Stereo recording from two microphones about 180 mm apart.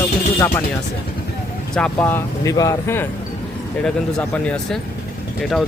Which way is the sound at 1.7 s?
10° left (ahead or behind).